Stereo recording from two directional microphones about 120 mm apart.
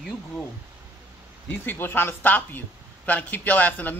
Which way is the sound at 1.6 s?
15° left (ahead or behind).